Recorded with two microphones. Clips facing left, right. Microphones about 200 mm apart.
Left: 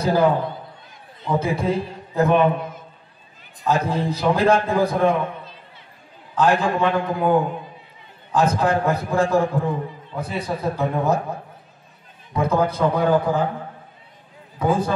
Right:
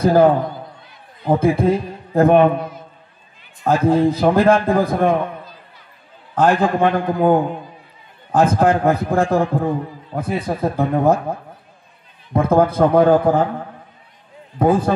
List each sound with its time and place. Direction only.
0.0 s a man's voice: 55° right (ahead or behind)
1.3 s a man's voice: 55° right (ahead or behind)
3.6 s a man's voice: 55° right (ahead or behind)
6.3 s a man's voice: 55° right (ahead or behind)
14.6 s a man's voice: 55° right (ahead or behind)